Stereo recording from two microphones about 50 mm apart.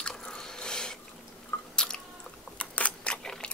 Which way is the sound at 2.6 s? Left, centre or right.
Left.